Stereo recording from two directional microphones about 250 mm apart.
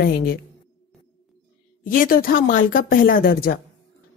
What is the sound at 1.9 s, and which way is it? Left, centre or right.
Speech, left.